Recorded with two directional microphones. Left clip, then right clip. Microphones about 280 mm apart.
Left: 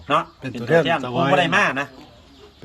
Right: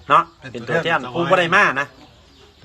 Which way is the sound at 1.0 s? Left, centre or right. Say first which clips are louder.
Left 1 dB; left.